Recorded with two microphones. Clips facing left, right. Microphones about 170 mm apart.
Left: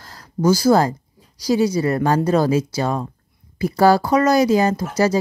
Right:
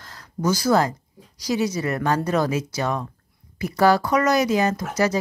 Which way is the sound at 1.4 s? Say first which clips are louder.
Left 6 dB; 30° left (ahead or behind).